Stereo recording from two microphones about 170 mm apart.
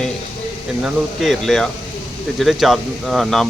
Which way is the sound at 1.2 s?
Centre (ahead or behind).